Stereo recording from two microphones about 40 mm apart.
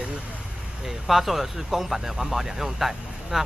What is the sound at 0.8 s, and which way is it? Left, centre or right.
A man's voice, centre.